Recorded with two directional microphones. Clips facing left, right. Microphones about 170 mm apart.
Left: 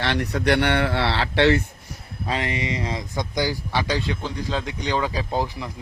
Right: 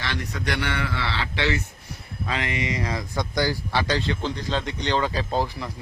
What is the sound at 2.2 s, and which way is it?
A man's voice, 30° left (ahead or behind).